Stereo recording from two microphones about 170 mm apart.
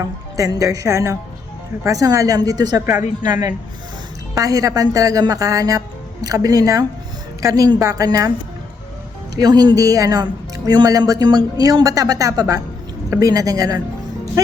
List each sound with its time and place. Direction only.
0.3 s speech: 20° right (ahead or behind)
9.3 s speech: 20° right (ahead or behind)